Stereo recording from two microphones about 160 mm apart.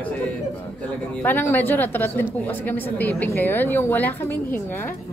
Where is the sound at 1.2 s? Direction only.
10° left (ahead or behind).